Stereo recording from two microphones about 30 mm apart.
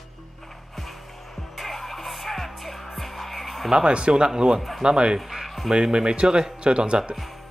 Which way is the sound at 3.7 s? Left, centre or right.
Right.